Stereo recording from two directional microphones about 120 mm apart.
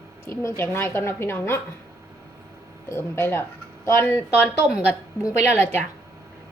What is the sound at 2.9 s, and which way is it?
A woman's voice, 20° left (ahead or behind).